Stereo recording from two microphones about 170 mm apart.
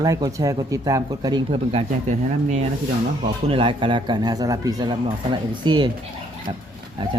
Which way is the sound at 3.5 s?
30° right (ahead or behind).